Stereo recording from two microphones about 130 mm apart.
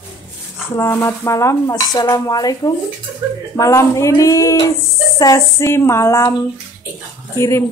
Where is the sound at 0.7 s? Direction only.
20° left (ahead or behind).